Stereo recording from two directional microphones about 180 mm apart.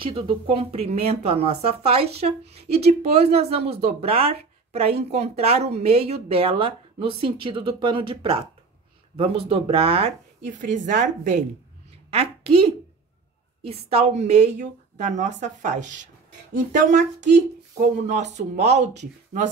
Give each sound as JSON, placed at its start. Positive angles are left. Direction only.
{"t": 0.0, "sound": "a woman's voice", "side_deg": -30}